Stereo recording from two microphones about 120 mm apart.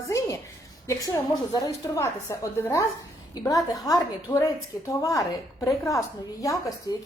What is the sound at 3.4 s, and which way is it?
A woman's voice, 35° left (ahead or behind).